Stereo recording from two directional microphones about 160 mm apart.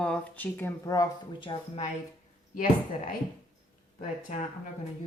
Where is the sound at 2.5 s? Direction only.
60° left (ahead or behind).